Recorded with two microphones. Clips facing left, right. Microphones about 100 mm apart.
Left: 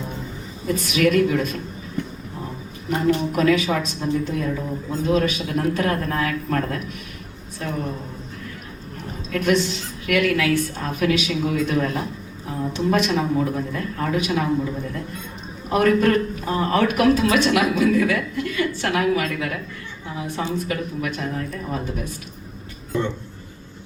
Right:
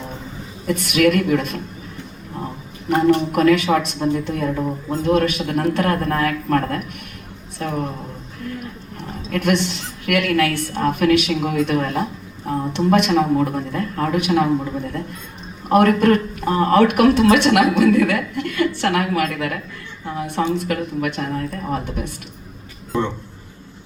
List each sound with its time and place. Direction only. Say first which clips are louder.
0.7 s speech: right 3 dB; 60° right (ahead or behind)
2.9 s a woman's voice: right 5 dB; 60° right (ahead or behind)
9.3 s speech: right 1 dB; 60° right (ahead or behind)